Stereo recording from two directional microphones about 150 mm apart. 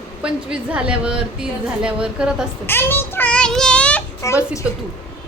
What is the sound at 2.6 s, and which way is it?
Child singing, 15° left (ahead or behind).